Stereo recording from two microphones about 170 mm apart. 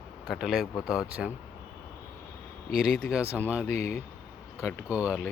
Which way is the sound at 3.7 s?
15° left (ahead or behind).